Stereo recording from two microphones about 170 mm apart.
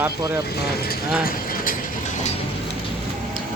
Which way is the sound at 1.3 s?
55° left (ahead or behind).